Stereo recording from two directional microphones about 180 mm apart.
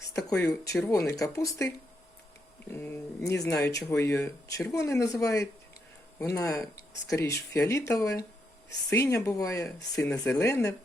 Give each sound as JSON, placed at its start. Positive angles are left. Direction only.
{"t": 0.1, "sound": "a sound", "side_deg": 20}
{"t": 0.4, "sound": "speech", "side_deg": 15}
{"t": 2.7, "sound": "speech", "side_deg": 15}